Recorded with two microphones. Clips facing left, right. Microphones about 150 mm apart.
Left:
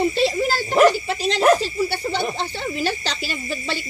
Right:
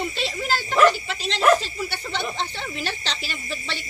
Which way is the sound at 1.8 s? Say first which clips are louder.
Left 7 dB; 35° left (ahead or behind).